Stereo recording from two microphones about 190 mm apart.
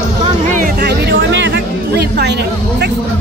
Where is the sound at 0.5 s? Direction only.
45° right (ahead or behind).